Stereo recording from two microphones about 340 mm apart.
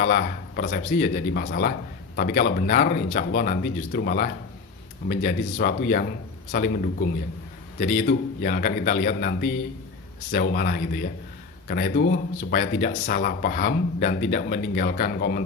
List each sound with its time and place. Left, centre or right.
0.0 s speech: left
7.8 s speech: left